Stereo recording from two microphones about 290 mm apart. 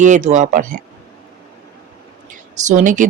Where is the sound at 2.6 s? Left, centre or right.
Right.